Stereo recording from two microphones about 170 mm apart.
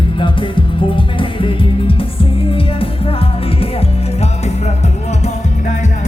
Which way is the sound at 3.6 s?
35° left (ahead or behind).